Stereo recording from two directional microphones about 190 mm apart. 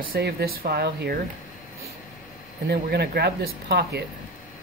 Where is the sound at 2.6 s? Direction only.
60° right (ahead or behind).